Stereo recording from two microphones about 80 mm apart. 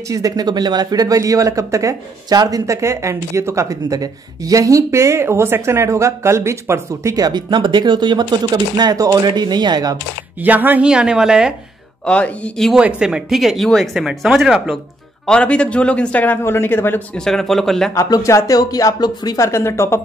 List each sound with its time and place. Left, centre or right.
0.1 s speech: right
7.2 s speech: right
9.2 s speech: right
10.4 s a woman's voice: right
10.9 s a woman's voice: centre
12.0 s a man's voice: centre
12.7 s speech: centre
15.2 s a man's voice: centre
16.4 s speech: left
17.1 s speech: centre
18.1 s speech: left